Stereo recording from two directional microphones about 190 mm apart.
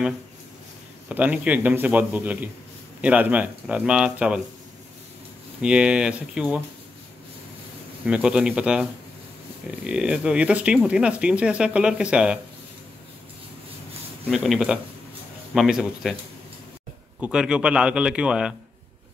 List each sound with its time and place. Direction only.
1.0 s a man's voice: 5° right (ahead or behind)
5.6 s speech: 5° right (ahead or behind)
8.0 s speech: 5° right (ahead or behind)
9.8 s speech: 5° right (ahead or behind)
14.3 s speech: centre (ahead or behind)
17.2 s speech: 5° right (ahead or behind)